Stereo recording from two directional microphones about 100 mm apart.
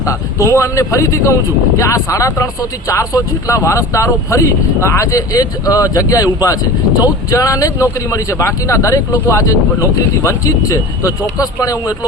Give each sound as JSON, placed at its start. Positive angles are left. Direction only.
{"t": 0.0, "sound": "speech", "side_deg": 30}